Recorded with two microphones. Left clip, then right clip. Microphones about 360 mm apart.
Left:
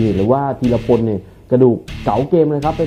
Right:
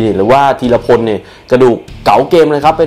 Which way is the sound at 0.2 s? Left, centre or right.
Centre.